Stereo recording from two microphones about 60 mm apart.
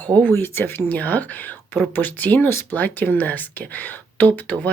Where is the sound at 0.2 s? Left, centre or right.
Left.